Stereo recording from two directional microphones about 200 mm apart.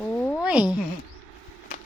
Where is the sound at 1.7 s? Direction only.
40° left (ahead or behind).